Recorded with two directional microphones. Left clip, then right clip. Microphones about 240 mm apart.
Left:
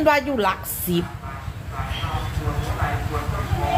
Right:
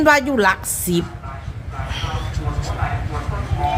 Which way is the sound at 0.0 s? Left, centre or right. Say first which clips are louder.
Right 4 dB; right.